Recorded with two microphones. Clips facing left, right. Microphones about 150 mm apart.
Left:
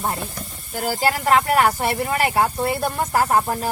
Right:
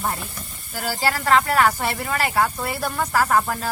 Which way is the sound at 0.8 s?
20° left (ahead or behind).